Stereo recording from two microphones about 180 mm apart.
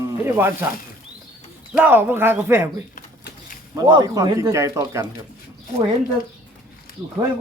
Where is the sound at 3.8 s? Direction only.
25° right (ahead or behind).